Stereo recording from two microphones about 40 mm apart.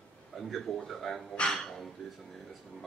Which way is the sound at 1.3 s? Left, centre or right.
Left.